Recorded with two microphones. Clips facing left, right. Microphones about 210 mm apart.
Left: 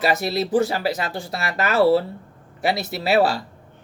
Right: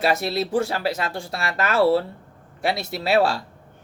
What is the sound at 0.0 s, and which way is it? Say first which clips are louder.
Speech: left 1 dB; centre (ahead or behind).